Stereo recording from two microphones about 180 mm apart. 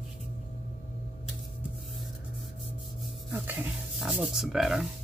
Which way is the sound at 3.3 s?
10° right (ahead or behind).